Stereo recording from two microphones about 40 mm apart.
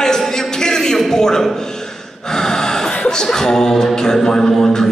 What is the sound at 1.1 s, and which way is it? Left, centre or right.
Speech, centre.